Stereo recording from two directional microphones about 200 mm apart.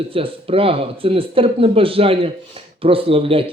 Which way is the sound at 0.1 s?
30° right (ahead or behind).